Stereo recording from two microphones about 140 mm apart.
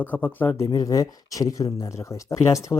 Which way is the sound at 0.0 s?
15° left (ahead or behind).